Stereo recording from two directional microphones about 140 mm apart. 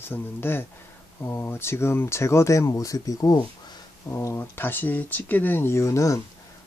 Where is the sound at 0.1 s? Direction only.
15° left (ahead or behind).